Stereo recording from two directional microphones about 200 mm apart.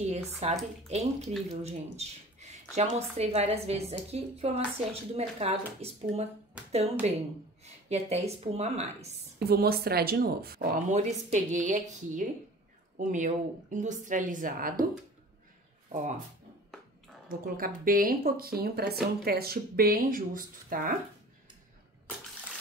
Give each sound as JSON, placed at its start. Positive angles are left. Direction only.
{"t": 0.0, "sound": "speech", "side_deg": -35}
{"t": 9.5, "sound": "speech", "side_deg": -50}
{"t": 10.9, "sound": "speech", "side_deg": -35}
{"t": 15.9, "sound": "speech", "side_deg": -35}
{"t": 17.3, "sound": "speech", "side_deg": -45}